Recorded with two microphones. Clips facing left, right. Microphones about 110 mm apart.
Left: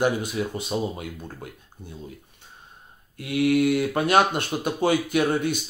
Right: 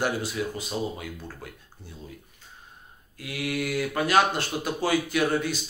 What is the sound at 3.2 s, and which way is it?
A man's voice, 25° left (ahead or behind).